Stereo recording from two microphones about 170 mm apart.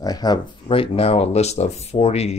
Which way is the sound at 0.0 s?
25° left (ahead or behind).